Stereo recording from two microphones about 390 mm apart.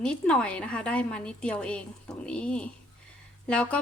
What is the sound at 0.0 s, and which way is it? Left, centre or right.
A woman's voice, centre.